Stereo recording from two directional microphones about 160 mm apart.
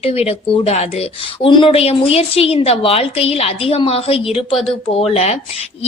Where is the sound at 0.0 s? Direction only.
40° left (ahead or behind).